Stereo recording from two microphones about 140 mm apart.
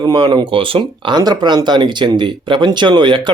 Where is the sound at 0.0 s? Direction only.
35° right (ahead or behind).